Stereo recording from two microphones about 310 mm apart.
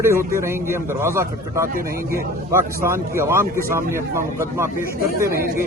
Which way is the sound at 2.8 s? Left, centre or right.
Centre.